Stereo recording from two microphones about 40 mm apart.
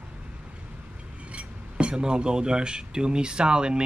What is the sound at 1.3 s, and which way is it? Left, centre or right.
Speech, right.